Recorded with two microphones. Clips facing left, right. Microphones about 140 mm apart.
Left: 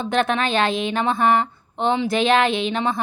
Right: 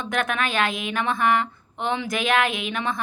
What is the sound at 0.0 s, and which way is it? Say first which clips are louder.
A woman's voice: left 5 dB; 30° left (ahead or behind).